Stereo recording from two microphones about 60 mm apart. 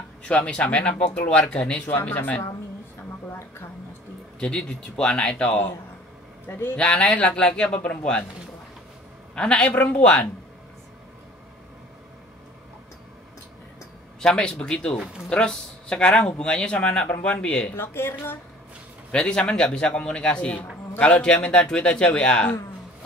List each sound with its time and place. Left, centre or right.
0.2 s a woman's voice: centre
4.4 s speech: centre
6.4 s a woman's voice: left
6.8 s speech: centre
9.3 s speech: centre
14.2 s speech: centre
17.7 s a woman's voice: left
19.1 s speech: centre